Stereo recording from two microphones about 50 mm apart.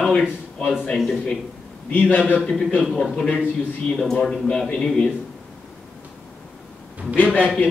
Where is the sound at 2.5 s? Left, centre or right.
Centre.